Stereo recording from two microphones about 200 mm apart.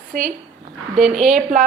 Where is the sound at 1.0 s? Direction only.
Centre (ahead or behind).